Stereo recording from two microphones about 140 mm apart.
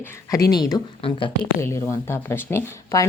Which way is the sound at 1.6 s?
20° left (ahead or behind).